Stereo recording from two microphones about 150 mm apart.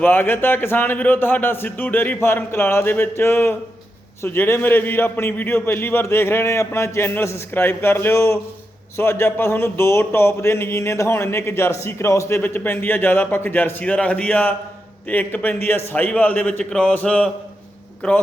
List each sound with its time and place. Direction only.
0.0 s a man's voice: 15° left (ahead or behind)